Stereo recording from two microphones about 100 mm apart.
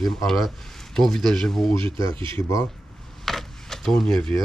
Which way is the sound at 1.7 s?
60° right (ahead or behind).